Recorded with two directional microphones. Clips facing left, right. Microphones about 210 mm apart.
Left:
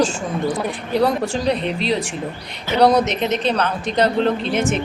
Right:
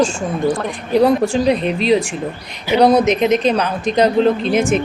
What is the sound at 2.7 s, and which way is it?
Speech, 10° right (ahead or behind).